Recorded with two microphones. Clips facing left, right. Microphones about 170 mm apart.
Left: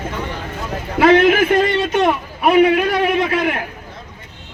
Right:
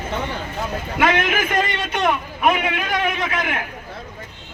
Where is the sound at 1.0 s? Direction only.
30° left (ahead or behind).